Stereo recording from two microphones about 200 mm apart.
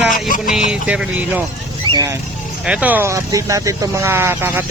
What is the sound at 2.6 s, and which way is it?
Speech, 5° right (ahead or behind).